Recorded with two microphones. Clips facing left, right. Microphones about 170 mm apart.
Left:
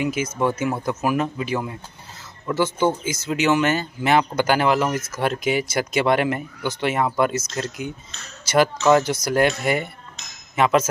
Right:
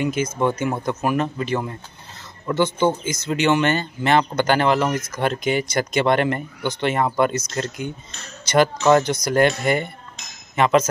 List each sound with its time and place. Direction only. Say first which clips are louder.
0.0 s speech: right 1 dB; 5° left (ahead or behind)